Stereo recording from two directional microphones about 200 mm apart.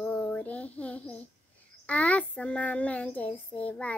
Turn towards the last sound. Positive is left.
turn(degrees=5)  # may be behind; listen again after turning